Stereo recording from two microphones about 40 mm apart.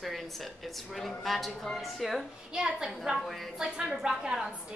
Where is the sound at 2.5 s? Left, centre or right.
Centre.